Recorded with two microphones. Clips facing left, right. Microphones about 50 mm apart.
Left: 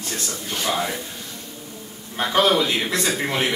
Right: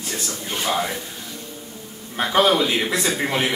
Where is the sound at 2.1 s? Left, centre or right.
Centre.